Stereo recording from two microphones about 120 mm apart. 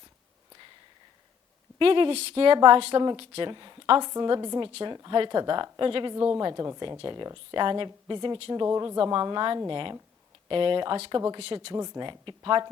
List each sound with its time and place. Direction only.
1.8 s speech: 50° right (ahead or behind)
4.1 s speech: 35° right (ahead or behind)
6.1 s a woman's voice: 25° right (ahead or behind); by 11.0 s 45° right (ahead or behind)
11.3 s speech: 55° right (ahead or behind)
11.7 s speech: 35° right (ahead or behind)